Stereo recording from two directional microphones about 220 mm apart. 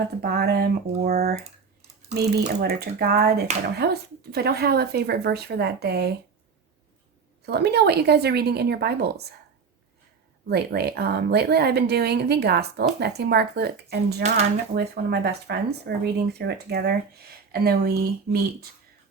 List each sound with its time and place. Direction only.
0.2 s a woman's voice: 45° right (ahead or behind)
7.4 s a woman's voice: 50° right (ahead or behind)
10.5 s a woman's voice: 45° right (ahead or behind)
14.2 s speech: 30° right (ahead or behind)
14.8 s a woman's voice: 50° right (ahead or behind)